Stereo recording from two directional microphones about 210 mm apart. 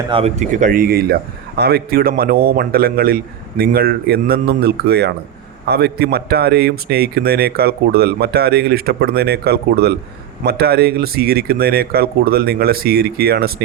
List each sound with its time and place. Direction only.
0.1 s a man's voice: 30° right (ahead or behind); by 13.5 s 50° right (ahead or behind)